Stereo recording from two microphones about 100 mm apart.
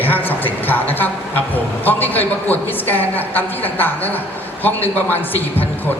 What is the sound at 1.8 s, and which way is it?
A man's voice, 20° left (ahead or behind).